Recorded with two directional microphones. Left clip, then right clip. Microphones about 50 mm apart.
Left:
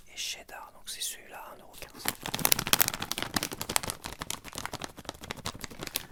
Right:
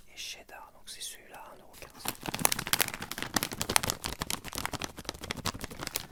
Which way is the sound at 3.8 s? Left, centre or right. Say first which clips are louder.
Right 3 dB; right.